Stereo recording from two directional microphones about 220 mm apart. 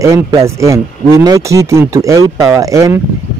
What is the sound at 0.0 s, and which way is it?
Speech, 15° right (ahead or behind).